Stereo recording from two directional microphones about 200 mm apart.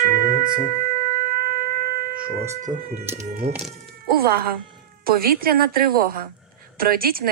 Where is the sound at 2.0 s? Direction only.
45° right (ahead or behind).